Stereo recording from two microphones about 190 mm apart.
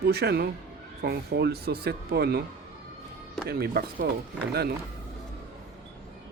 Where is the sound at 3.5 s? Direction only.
55° right (ahead or behind).